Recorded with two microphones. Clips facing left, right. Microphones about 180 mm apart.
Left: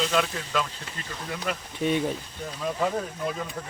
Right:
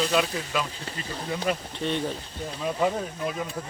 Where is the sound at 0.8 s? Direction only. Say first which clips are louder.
Right 3 dB; 30° right (ahead or behind).